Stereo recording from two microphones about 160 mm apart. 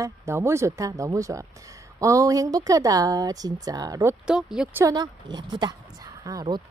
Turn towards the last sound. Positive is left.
turn(degrees=-25)  # may be behind; listen again after turning